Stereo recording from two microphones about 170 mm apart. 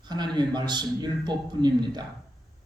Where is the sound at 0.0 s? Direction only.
25° right (ahead or behind).